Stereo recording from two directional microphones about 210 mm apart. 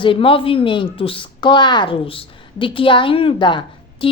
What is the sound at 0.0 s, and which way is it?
Speech, 25° left (ahead or behind).